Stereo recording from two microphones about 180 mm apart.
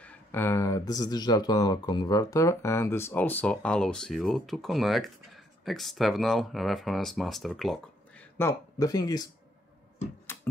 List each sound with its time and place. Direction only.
0.0 s speech: 10° left (ahead or behind)
8.4 s speech: 15° left (ahead or behind)